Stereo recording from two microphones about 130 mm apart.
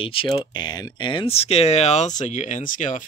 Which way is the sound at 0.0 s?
45° left (ahead or behind).